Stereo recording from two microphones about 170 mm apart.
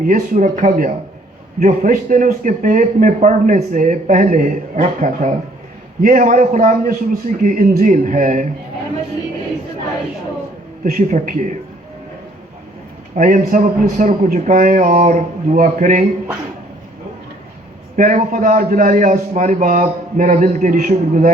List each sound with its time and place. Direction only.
0.0 s speech: 50° right (ahead or behind)
10.8 s speech: 50° right (ahead or behind)
13.1 s speech: 50° right (ahead or behind)
17.9 s speech: 50° right (ahead or behind)